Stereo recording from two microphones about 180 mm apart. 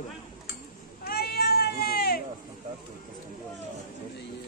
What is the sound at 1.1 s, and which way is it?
Cat, 60° left (ahead or behind).